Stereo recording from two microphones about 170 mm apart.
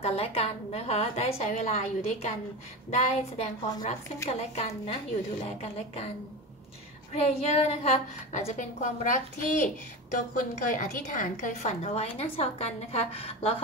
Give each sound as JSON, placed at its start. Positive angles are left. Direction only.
{"t": 0.0, "sound": "a woman's voice", "side_deg": 35}
{"t": 7.2, "sound": "a woman's voice", "side_deg": 40}